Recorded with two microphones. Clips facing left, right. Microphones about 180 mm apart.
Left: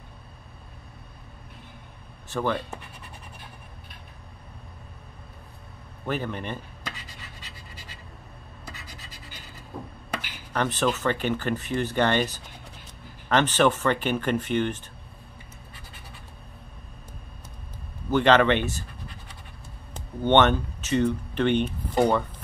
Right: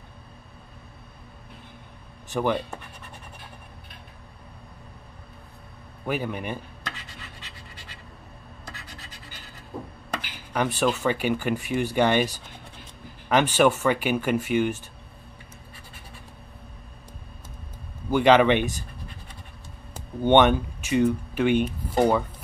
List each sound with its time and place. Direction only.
2.2 s speech: 15° right (ahead or behind)
6.0 s speech: 10° right (ahead or behind)
10.5 s speech: 10° right (ahead or behind)
18.1 s speech: 10° right (ahead or behind)
19.9 s speech: 10° right (ahead or behind)